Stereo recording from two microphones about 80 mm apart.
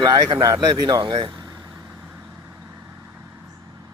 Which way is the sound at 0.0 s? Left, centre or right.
Right.